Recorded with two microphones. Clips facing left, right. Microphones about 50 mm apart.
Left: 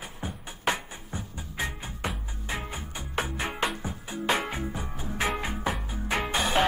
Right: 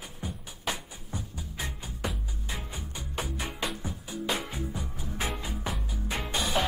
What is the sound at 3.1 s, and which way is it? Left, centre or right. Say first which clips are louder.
Music: left 5 dB; left.